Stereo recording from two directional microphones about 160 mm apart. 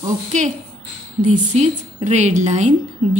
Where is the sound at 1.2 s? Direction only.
50° right (ahead or behind).